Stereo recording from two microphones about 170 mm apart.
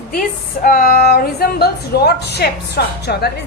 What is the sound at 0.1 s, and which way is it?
A woman's voice, 55° left (ahead or behind).